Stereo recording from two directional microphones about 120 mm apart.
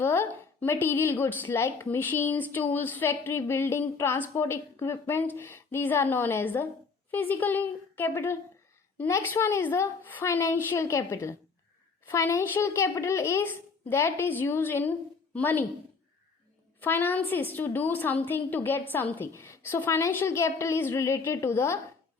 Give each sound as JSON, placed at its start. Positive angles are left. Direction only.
{"t": 0.0, "sound": "a woman's voice", "side_deg": 20}
{"t": 16.8, "sound": "a woman's voice", "side_deg": 15}